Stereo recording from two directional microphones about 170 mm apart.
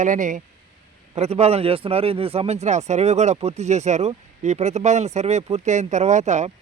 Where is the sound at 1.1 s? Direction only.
40° right (ahead or behind).